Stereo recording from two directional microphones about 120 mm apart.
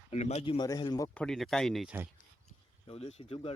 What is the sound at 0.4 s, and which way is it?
Speech, 45° left (ahead or behind).